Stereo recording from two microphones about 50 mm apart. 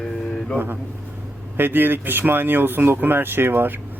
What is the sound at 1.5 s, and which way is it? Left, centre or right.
Speech, right.